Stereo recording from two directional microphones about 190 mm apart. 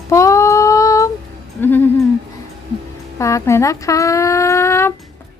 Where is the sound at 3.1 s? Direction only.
15° left (ahead or behind).